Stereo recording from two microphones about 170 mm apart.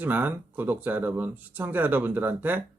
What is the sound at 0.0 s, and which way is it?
Speech, 10° right (ahead or behind).